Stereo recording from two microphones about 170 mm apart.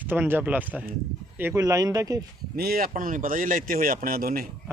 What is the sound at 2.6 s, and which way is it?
A man's voice, 60° right (ahead or behind).